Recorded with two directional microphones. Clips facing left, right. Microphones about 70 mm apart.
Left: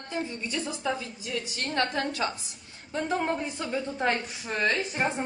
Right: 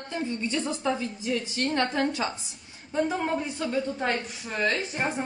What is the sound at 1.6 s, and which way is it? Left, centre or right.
Speech, right.